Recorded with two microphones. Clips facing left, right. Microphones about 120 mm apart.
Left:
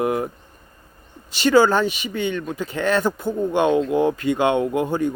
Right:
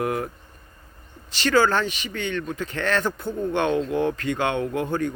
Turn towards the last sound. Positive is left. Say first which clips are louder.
# left 4 dB
turn(degrees=15)  # may be behind; listen again after turning